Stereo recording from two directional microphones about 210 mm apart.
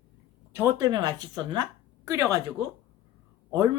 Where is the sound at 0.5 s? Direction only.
15° right (ahead or behind).